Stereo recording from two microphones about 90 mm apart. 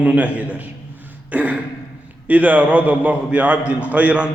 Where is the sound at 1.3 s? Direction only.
15° right (ahead or behind).